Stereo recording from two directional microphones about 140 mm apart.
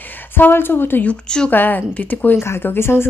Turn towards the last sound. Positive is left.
turn(degrees=15)  # may be behind; listen again after turning